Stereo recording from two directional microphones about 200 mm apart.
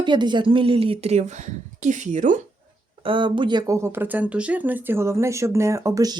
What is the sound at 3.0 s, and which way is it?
Speech, 25° right (ahead or behind).